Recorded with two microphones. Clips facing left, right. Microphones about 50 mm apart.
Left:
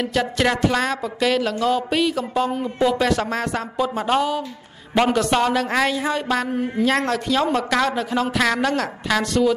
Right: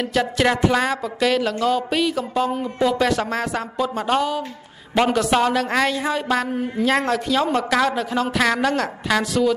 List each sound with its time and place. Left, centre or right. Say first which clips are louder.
0.0 s a woman's voice: right 1 dB; centre